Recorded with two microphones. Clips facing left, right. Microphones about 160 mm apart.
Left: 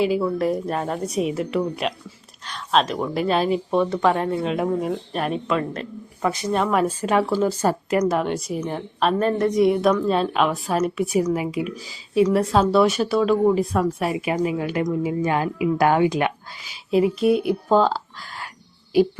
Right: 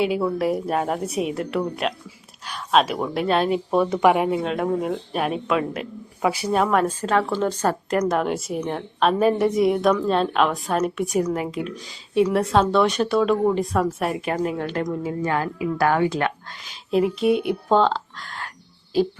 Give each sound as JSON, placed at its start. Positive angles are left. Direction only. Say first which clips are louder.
{"t": 0.0, "sound": "speech", "louder": "left 1 dB", "side_deg": 0}
{"t": 3.8, "sound": "speech", "louder": "right 2 dB", "side_deg": -15}
{"t": 4.4, "sound": "speech", "louder": "even", "side_deg": 0}
{"t": 16.9, "sound": "speech", "louder": "left 1 dB", "side_deg": 0}